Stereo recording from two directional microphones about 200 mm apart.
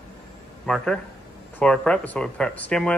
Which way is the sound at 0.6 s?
5° left (ahead or behind).